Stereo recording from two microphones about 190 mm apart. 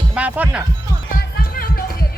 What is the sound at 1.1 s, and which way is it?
Music, 50° left (ahead or behind).